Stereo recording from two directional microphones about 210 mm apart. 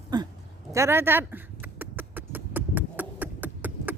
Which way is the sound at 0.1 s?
20° right (ahead or behind).